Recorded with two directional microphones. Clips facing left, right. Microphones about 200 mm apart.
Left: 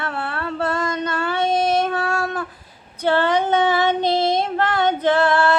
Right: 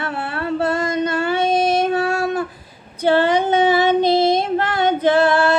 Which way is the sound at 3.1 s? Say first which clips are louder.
Right 2 dB; 10° right (ahead or behind).